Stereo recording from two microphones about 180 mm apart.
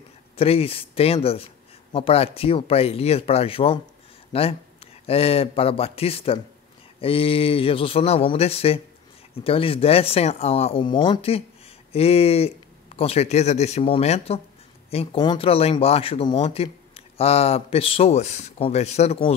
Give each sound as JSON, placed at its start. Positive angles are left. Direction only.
{"t": 0.4, "sound": "speech", "side_deg": 30}